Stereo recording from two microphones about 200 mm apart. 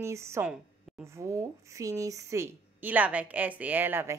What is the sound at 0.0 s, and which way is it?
Speech, 15° right (ahead or behind).